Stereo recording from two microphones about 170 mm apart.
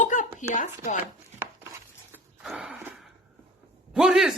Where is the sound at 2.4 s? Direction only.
Centre (ahead or behind).